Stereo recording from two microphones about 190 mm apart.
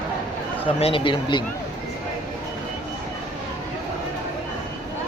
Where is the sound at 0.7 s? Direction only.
30° left (ahead or behind).